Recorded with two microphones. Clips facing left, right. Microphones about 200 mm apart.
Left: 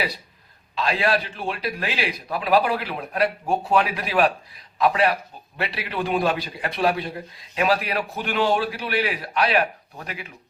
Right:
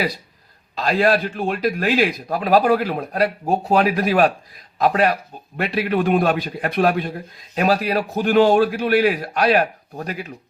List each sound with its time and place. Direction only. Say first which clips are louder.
0.8 s a man's voice: right 5 dB; 45° right (ahead or behind)
7.5 s a man's voice: right 4 dB; 40° right (ahead or behind)